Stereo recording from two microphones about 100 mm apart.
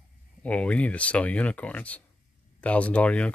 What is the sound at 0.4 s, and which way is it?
Speech, 15° left (ahead or behind).